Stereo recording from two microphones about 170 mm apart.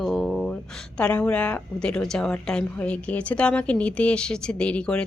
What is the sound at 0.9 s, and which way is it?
A woman's voice, 10° left (ahead or behind).